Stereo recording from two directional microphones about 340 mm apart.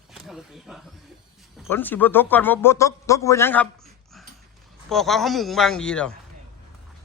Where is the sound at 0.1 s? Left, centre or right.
Centre.